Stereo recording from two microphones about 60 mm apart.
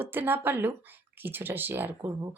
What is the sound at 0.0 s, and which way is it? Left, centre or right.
Speech, right.